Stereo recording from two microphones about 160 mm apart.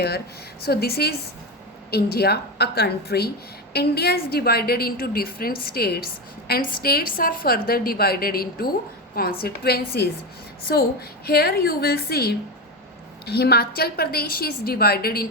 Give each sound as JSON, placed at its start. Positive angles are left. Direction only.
{"t": 0.6, "sound": "a woman's voice", "side_deg": 80}